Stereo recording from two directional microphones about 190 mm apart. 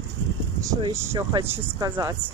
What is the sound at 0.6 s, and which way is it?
Speech, 20° right (ahead or behind).